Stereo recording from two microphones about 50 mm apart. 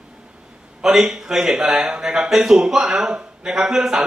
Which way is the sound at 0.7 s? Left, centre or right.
Centre.